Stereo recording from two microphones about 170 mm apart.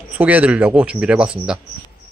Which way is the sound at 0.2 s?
10° right (ahead or behind).